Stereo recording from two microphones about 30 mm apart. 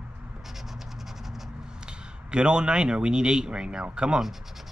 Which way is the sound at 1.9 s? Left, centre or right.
Right.